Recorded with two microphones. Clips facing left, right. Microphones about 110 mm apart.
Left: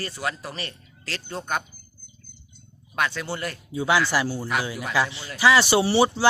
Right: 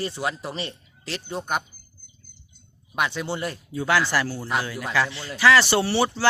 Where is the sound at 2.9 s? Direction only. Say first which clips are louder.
Right 1 dB; 20° right (ahead or behind).